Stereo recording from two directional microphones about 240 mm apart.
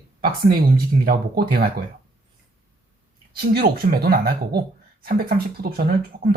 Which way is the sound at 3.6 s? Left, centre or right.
Right.